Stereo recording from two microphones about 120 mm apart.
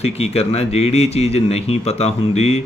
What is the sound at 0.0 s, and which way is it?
Speech, 60° left (ahead or behind).